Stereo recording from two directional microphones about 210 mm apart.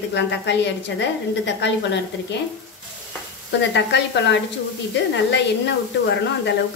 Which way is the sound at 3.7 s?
55° left (ahead or behind).